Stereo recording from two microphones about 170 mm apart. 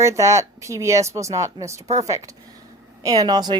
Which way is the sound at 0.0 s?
15° right (ahead or behind).